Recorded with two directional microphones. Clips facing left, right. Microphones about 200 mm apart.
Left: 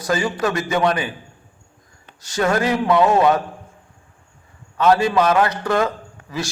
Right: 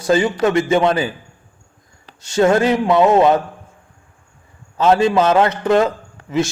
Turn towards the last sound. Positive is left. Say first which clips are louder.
# right 9 dB
turn(degrees=-25)  # may be behind; listen again after turning